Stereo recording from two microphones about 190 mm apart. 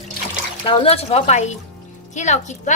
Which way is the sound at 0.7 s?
30° left (ahead or behind).